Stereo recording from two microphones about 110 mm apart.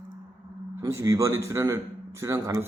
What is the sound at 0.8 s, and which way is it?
Speech, 30° right (ahead or behind).